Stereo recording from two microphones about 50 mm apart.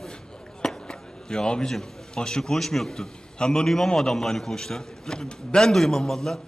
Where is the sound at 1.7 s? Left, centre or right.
Centre.